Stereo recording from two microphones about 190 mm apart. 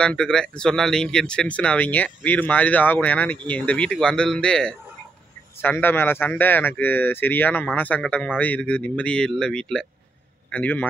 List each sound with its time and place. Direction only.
0.0 s speech: 5° left (ahead or behind)